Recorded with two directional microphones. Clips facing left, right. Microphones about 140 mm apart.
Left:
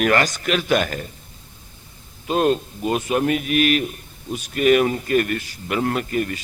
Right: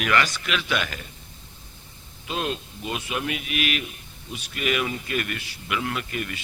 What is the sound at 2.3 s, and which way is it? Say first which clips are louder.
A man's voice: left 10 dB; 45° left (ahead or behind).